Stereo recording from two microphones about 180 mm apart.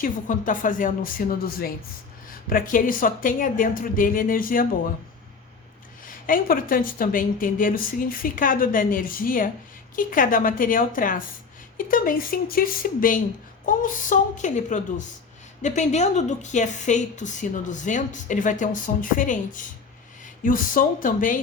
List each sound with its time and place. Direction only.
0.0 s a woman's voice: 45° left (ahead or behind)
6.1 s a woman's voice: 50° left (ahead or behind)